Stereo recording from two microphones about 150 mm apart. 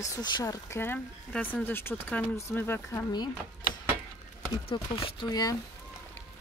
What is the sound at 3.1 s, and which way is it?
Speech, 30° left (ahead or behind).